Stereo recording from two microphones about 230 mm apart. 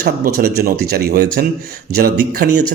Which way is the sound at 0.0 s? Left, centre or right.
Right.